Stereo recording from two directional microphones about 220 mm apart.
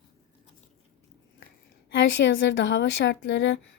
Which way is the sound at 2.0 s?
50° left (ahead or behind).